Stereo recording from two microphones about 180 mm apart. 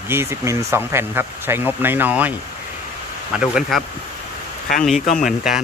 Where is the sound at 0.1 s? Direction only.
15° right (ahead or behind).